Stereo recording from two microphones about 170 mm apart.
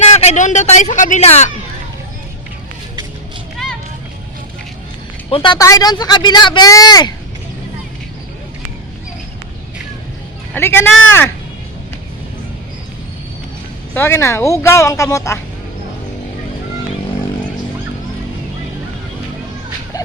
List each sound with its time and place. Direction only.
0.1 s a man's voice: 40° left (ahead or behind)
5.3 s speech: 25° left (ahead or behind)
10.5 s speech: 15° left (ahead or behind)
13.9 s speech: 15° left (ahead or behind)